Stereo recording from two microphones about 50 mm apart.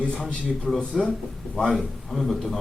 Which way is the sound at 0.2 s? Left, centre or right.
Left.